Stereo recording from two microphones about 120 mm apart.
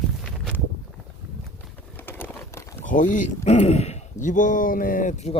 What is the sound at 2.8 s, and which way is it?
Speech, 90° left.